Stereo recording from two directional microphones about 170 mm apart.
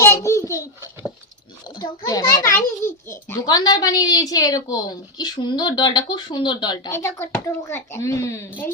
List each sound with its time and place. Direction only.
0.0 s a sound: 15° left (ahead or behind)
1.7 s a child's voice: 25° left (ahead or behind)
6.9 s a woman's voice: 15° left (ahead or behind)